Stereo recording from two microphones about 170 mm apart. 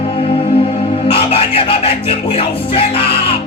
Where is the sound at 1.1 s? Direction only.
35° left (ahead or behind).